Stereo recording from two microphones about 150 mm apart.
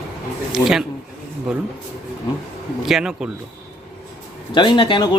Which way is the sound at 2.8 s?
5° right (ahead or behind).